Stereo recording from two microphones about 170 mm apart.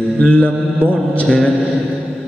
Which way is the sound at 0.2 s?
5° left (ahead or behind).